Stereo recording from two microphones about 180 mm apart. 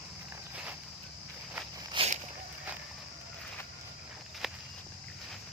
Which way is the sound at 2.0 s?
25° right (ahead or behind).